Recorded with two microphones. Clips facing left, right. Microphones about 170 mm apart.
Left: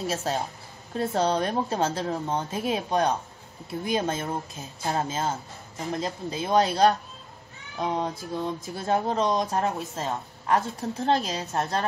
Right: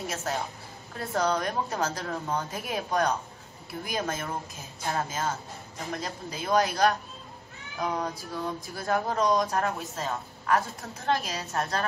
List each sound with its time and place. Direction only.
0.1 s a woman's voice: 30° left (ahead or behind)